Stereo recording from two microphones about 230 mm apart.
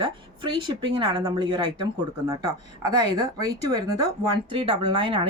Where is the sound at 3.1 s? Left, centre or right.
Centre.